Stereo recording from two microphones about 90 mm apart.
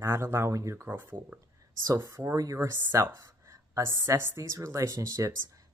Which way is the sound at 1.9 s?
35° right (ahead or behind).